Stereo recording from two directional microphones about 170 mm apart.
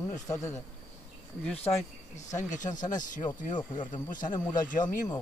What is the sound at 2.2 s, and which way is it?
Speech, 45° left (ahead or behind).